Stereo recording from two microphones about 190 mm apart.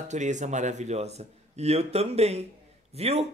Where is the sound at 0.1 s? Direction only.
40° right (ahead or behind).